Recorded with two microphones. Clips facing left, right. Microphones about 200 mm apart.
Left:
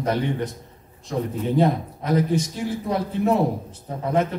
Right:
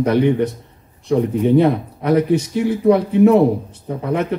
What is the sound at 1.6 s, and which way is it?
Speech, 65° right (ahead or behind).